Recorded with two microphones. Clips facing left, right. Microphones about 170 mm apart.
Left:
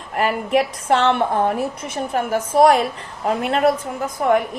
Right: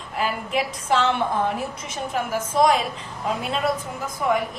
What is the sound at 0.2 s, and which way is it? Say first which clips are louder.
A woman's voice: left 6 dB; 65° left (ahead or behind).